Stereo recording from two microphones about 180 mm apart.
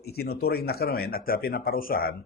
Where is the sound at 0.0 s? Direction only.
60° left (ahead or behind).